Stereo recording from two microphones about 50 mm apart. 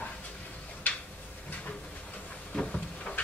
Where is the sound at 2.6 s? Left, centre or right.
Left.